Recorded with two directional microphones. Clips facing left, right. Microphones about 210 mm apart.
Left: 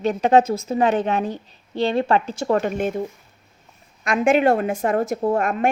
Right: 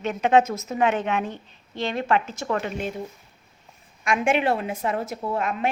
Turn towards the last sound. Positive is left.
turn(degrees=50)  # may be behind; listen again after turning